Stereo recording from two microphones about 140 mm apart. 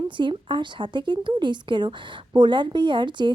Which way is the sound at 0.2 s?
35° right (ahead or behind).